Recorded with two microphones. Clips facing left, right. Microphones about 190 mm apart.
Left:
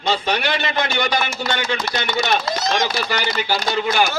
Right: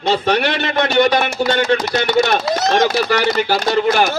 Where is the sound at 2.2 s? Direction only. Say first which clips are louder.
Right 2 dB; 45° right (ahead or behind).